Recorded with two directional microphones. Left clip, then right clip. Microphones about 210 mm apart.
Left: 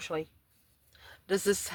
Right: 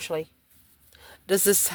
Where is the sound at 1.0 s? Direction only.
50° right (ahead or behind).